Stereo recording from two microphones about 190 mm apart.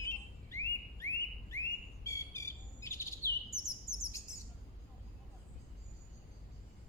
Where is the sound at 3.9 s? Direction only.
30° left (ahead or behind).